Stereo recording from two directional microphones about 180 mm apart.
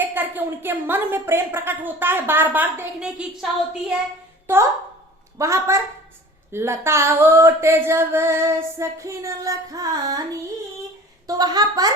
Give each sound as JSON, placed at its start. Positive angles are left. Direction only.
{"t": 0.0, "sound": "speech", "side_deg": -10}
{"t": 5.4, "sound": "speech", "side_deg": -15}
{"t": 11.3, "sound": "a woman's voice", "side_deg": -20}